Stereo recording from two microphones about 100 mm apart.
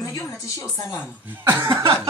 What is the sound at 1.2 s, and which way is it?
Speech, 20° right (ahead or behind).